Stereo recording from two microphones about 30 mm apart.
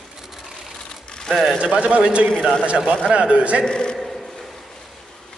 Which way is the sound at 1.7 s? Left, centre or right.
Right.